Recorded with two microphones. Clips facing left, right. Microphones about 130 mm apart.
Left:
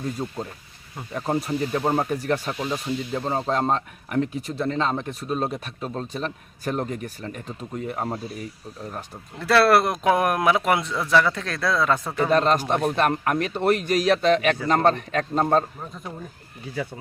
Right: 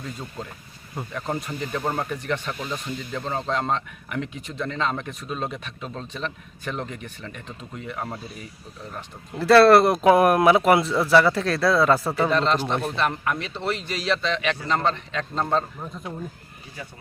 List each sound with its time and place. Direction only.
0.0 s speech: 35° left (ahead or behind)
2.2 s speech: 40° left (ahead or behind)
9.4 s speech: centre (ahead or behind)
12.3 s speech: 45° left (ahead or behind)